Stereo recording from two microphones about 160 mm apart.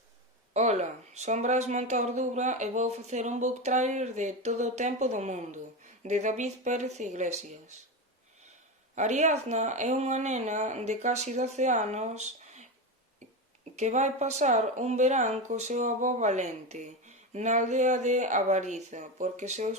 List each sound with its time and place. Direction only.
0.5 s speech: 45° right (ahead or behind)
9.0 s speech: 45° right (ahead or behind)
13.7 s speech: 45° right (ahead or behind)